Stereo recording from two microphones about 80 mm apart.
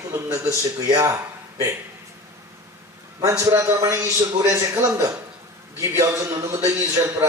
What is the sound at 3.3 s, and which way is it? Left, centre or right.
A man's voice, right.